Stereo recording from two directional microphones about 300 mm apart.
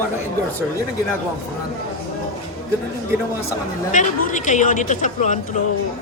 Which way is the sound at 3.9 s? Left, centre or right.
Left.